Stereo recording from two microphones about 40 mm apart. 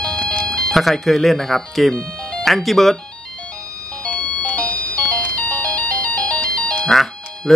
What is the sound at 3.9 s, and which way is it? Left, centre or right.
Music, left.